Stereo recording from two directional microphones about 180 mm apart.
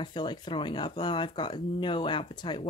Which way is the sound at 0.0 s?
25° left (ahead or behind).